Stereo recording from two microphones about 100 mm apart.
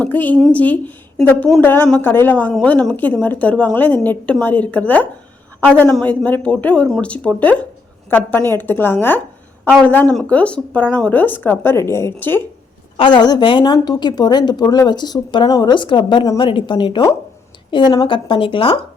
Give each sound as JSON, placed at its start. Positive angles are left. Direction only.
{"t": 0.0, "sound": "a woman's voice", "side_deg": 15}
{"t": 13.0, "sound": "speech", "side_deg": 50}
{"t": 13.7, "sound": "a woman's voice", "side_deg": 40}